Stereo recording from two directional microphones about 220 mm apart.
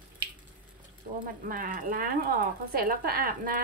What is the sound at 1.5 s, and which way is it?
Speech, 40° right (ahead or behind).